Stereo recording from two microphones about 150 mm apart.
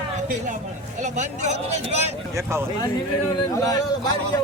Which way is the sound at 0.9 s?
50° right (ahead or behind).